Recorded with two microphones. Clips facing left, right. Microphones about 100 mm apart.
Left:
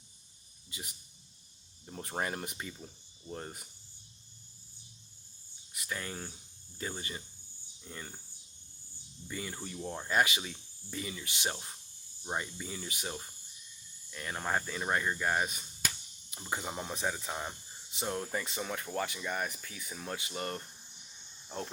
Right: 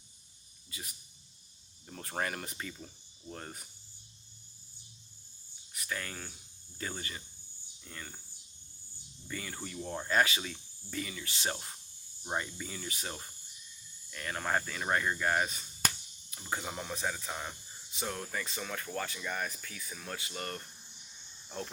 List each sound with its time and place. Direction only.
0.7 s speech: 20° left (ahead or behind)
5.7 s speech: 20° left (ahead or behind)
9.2 s speech: 15° left (ahead or behind)
9.8 s speech: 5° left (ahead or behind)
11.5 s speech: centre (ahead or behind); by 20.7 s 25° left (ahead or behind)